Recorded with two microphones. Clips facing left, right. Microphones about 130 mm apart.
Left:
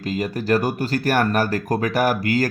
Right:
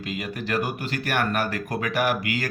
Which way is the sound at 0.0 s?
40° left (ahead or behind).